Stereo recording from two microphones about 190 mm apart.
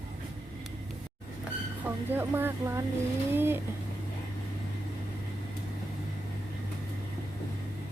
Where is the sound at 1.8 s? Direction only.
10° right (ahead or behind).